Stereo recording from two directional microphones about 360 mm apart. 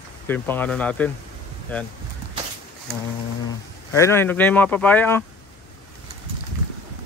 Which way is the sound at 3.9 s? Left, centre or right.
Centre.